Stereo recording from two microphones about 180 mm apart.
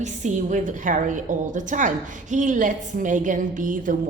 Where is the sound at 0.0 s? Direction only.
45° right (ahead or behind).